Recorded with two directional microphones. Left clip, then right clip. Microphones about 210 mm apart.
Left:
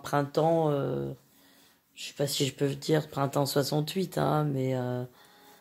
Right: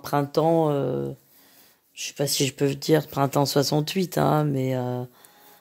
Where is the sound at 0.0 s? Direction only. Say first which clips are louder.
Right 4 dB; 40° right (ahead or behind).